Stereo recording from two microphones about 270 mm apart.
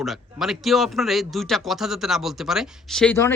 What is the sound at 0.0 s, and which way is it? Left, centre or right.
Speech, centre.